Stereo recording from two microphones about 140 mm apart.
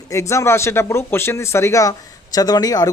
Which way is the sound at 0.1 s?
20° left (ahead or behind).